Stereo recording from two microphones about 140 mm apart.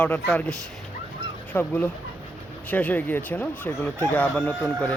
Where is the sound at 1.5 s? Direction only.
10° left (ahead or behind).